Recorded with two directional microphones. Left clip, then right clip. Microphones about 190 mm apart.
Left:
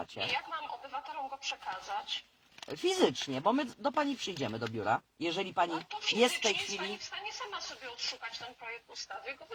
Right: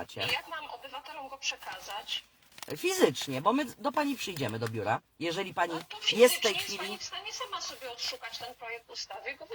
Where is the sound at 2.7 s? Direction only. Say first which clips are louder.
Right 2 dB; 10° right (ahead or behind).